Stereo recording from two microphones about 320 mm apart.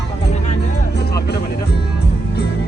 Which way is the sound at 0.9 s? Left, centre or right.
Left.